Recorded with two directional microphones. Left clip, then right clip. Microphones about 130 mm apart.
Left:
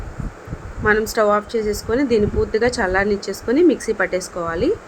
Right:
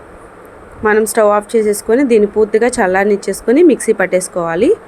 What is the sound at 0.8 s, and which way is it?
A woman's voice, 25° right (ahead or behind).